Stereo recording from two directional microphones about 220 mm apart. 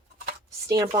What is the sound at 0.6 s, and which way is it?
Speech, 15° right (ahead or behind).